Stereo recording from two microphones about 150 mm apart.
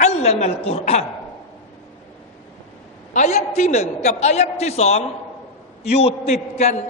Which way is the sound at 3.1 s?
50° left (ahead or behind).